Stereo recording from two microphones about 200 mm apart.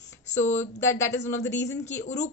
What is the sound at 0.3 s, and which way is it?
Speech, 35° left (ahead or behind).